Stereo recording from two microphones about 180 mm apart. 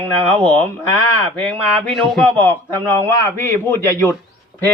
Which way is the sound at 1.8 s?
Centre (ahead or behind).